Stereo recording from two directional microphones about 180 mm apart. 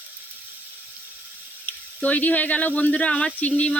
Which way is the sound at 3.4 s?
10° left (ahead or behind).